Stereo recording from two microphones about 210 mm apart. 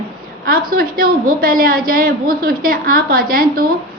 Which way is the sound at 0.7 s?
45° right (ahead or behind).